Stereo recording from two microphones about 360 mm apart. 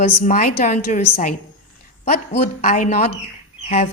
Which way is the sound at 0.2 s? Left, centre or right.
Left.